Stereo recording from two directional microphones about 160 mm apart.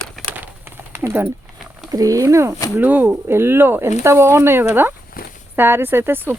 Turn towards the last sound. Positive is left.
turn(degrees=-15)  # may be behind; listen again after turning